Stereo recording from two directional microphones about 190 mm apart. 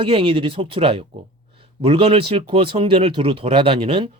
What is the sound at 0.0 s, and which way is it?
A man's voice, 30° right (ahead or behind).